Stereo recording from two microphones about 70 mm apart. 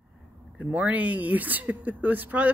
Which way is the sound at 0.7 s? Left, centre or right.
Right.